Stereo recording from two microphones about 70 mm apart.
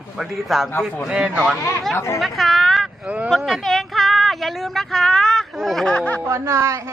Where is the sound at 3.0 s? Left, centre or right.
Centre.